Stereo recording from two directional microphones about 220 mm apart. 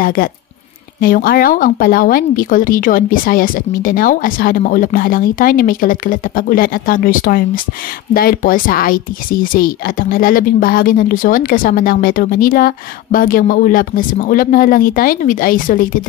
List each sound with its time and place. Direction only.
0.0 s speech: 40° left (ahead or behind)